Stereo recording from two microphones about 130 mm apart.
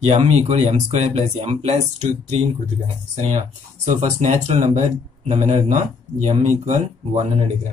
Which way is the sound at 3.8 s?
65° right (ahead or behind).